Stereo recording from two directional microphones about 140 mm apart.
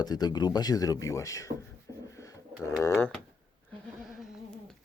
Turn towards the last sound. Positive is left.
turn(degrees=0)  # may be behind; listen again after turning